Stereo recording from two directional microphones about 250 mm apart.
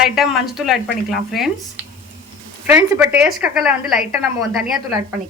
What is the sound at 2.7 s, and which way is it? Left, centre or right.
Speech, centre.